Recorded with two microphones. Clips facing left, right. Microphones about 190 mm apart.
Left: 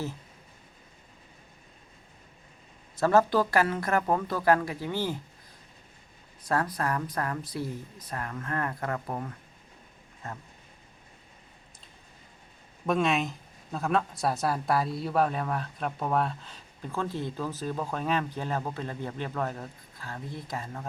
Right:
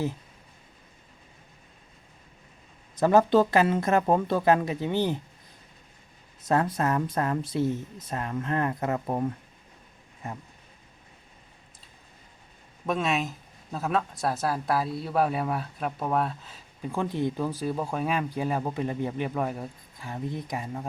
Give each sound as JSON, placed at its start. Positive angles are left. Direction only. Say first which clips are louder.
{"t": 2.9, "sound": "speech", "louder": "right 3 dB", "side_deg": -15}
{"t": 6.4, "sound": "speech", "louder": "right 4 dB", "side_deg": -25}
{"t": 12.8, "sound": "speech", "louder": "left 1 dB", "side_deg": 0}
{"t": 16.9, "sound": "speech", "louder": "right 4 dB", "side_deg": -15}